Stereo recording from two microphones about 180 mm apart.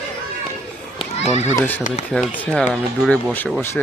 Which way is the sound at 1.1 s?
35° left (ahead or behind).